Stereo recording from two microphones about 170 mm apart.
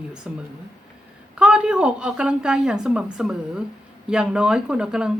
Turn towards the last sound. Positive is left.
turn(degrees=-5)  # may be behind; listen again after turning